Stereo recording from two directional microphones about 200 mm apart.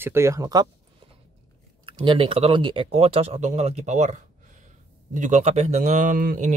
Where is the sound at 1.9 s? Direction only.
25° right (ahead or behind).